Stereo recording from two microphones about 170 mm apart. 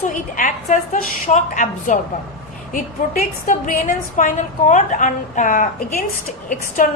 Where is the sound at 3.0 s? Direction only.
50° left (ahead or behind).